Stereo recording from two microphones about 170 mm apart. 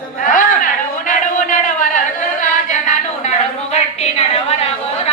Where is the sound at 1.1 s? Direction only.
50° left (ahead or behind).